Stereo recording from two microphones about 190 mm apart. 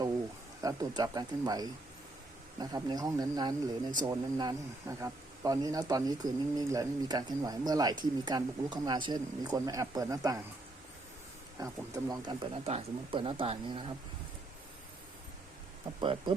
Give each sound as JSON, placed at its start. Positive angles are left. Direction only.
{"t": 0.6, "sound": "speech", "side_deg": -15}
{"t": 11.6, "sound": "speech", "side_deg": -15}
{"t": 16.0, "sound": "speech", "side_deg": -25}